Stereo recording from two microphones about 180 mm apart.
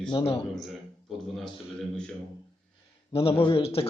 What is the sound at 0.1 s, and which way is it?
Speech, 30° left (ahead or behind).